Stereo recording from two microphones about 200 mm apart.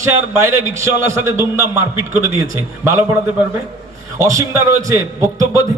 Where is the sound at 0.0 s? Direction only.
15° right (ahead or behind).